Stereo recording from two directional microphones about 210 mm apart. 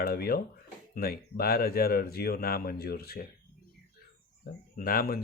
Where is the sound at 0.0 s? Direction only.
45° left (ahead or behind).